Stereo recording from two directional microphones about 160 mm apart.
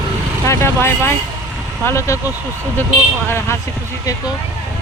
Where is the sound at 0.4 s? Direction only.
15° left (ahead or behind).